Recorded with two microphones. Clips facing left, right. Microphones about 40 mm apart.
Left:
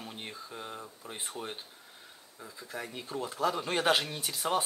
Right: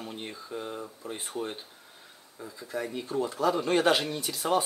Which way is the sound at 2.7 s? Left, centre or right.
Centre.